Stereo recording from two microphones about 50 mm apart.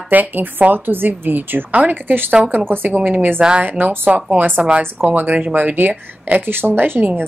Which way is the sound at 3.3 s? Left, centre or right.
Right.